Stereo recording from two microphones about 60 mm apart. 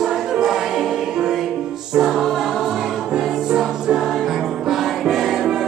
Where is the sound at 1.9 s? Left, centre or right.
Centre.